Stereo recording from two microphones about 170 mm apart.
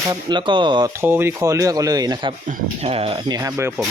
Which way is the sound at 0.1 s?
25° right (ahead or behind).